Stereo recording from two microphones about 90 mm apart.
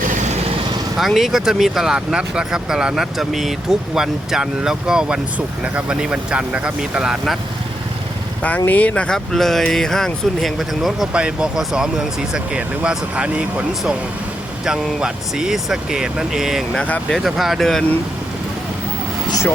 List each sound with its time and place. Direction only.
0.9 s speech: centre (ahead or behind)
8.4 s speech: 15° left (ahead or behind); by 11.1 s centre (ahead or behind)
11.1 s speech: 10° right (ahead or behind)
16.7 s speech: 15° left (ahead or behind)
17.1 s speech: centre (ahead or behind)